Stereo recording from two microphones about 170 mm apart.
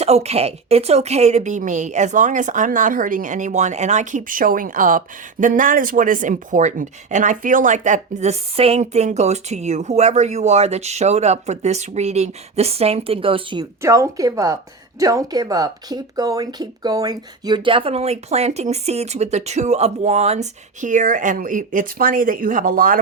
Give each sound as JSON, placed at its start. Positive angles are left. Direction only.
{"t": 0.0, "sound": "speech", "side_deg": -40}
{"t": 13.8, "sound": "a woman's voice", "side_deg": -15}